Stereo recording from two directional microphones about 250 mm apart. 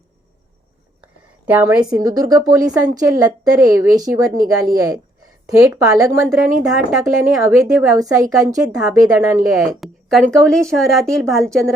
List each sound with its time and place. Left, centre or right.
1.0 s speech: centre
6.2 s a woman's voice: centre
7.9 s speech: centre
9.6 s a woman's voice: centre